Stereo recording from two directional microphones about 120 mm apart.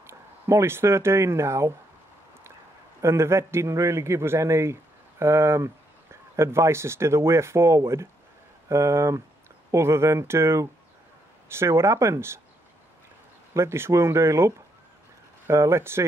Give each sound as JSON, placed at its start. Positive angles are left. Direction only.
{"t": 0.0, "sound": "speech", "side_deg": -25}
{"t": 3.0, "sound": "speech", "side_deg": -25}
{"t": 13.5, "sound": "speech", "side_deg": -20}